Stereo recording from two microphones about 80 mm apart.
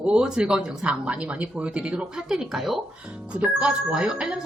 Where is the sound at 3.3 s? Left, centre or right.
Centre.